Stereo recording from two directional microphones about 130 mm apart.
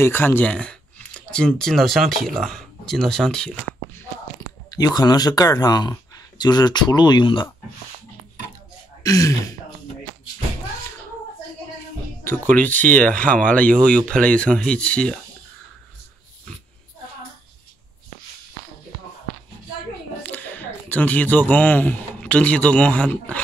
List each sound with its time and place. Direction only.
0.0 s speech: 15° left (ahead or behind)
4.6 s speech: 30° left (ahead or behind)
9.0 s speech: 25° left (ahead or behind)
12.3 s speech: 10° left (ahead or behind)
20.2 s speech: 10° left (ahead or behind)